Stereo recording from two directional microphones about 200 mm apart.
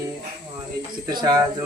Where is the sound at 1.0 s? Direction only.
20° right (ahead or behind).